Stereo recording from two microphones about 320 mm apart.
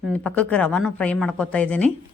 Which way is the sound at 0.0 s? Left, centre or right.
Centre.